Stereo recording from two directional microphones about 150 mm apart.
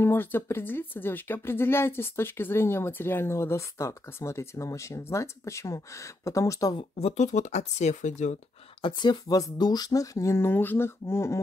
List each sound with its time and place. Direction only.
0.0 s speech: 15° left (ahead or behind)
6.8 s speech: 45° left (ahead or behind)
8.8 s speech: 30° left (ahead or behind)